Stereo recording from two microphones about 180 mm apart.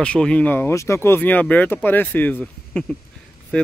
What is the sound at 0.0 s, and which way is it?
Speech, 5° left (ahead or behind).